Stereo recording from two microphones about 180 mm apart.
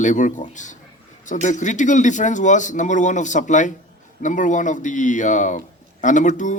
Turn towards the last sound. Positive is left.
turn(degrees=45)  # may be behind; listen again after turning